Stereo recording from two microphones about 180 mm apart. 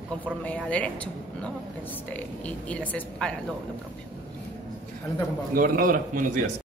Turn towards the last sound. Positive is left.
turn(degrees=-50)  # may be behind; listen again after turning